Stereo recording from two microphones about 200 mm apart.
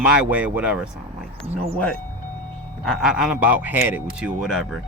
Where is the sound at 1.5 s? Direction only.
30° right (ahead or behind).